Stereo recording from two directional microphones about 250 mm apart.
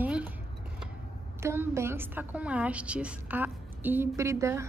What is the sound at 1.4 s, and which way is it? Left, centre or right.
A woman's voice, centre.